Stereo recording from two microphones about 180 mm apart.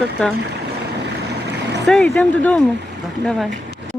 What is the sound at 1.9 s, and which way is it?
Speech, 5° left (ahead or behind).